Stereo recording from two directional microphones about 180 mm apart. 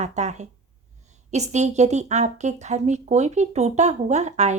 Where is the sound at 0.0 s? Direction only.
40° right (ahead or behind).